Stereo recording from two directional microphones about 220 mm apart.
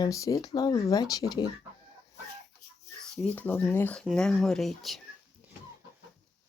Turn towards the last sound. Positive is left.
turn(degrees=0)  # may be behind; listen again after turning